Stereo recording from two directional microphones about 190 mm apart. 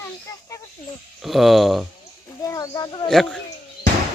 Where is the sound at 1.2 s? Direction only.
Centre (ahead or behind).